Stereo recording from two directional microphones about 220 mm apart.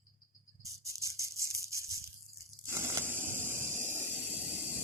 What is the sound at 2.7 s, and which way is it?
Tearing, 15° right (ahead or behind).